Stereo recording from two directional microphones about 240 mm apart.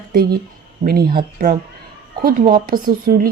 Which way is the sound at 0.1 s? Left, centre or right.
Right.